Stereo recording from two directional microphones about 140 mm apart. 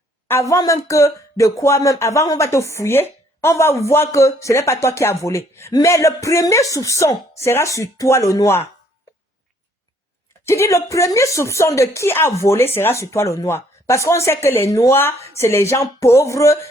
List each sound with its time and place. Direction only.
0.3 s a woman's voice: 20° left (ahead or behind)
10.4 s a woman's voice: 20° left (ahead or behind)